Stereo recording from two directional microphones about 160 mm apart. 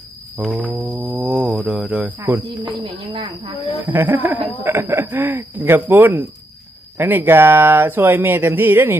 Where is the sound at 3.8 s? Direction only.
10° right (ahead or behind).